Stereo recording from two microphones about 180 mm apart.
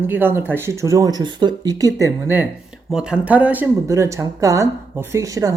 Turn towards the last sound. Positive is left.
turn(degrees=-20)  # may be behind; listen again after turning